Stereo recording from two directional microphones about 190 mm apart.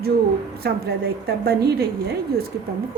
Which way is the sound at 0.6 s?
55° right (ahead or behind).